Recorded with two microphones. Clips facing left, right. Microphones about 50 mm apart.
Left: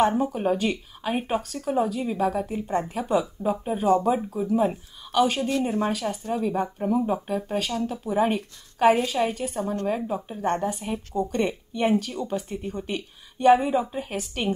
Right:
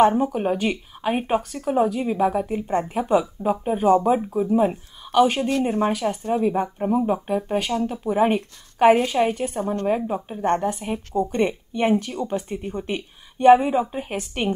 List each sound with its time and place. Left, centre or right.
0.1 s a woman's voice: centre